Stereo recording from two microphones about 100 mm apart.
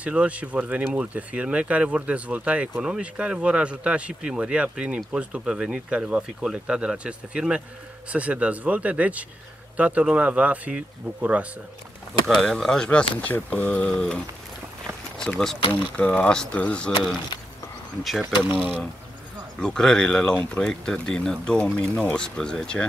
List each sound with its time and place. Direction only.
0.0 s speech: 10° right (ahead or behind)
12.3 s speech: 5° left (ahead or behind)
18.2 s speech: 20° right (ahead or behind)
19.6 s speech: 5° left (ahead or behind)